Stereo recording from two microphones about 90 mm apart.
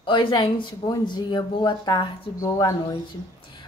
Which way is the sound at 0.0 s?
60° left (ahead or behind).